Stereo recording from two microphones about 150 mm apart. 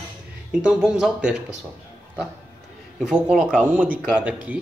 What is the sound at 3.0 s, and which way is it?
A man's voice, 5° right (ahead or behind).